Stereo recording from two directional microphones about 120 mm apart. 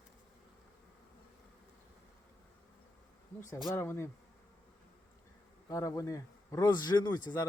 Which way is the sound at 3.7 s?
20° left (ahead or behind).